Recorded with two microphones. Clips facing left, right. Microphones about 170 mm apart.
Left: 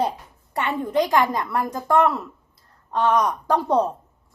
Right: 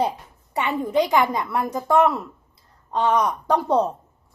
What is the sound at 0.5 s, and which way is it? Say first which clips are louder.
A woman's voice: right 1 dB; 10° right (ahead or behind).